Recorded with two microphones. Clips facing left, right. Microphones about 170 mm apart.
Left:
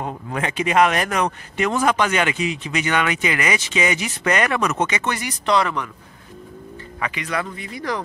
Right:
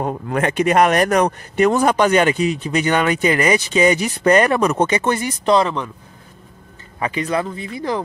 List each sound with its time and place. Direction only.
0.0 s speech: 50° right (ahead or behind); by 5.9 s 25° right (ahead or behind)
7.0 s speech: 35° right (ahead or behind)